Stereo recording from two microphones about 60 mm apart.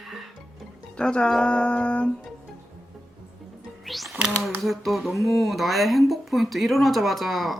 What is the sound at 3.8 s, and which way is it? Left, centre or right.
Speech, centre.